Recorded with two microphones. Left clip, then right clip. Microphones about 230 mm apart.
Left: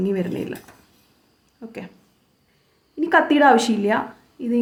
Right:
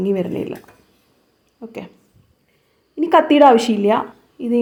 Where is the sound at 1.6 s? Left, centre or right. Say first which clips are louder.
Right 4 dB; centre.